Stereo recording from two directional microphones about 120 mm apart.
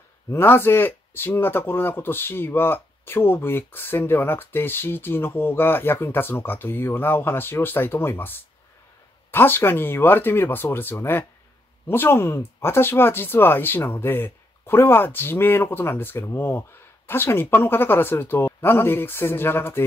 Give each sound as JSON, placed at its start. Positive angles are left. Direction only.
{"t": 0.3, "sound": "speech", "side_deg": 20}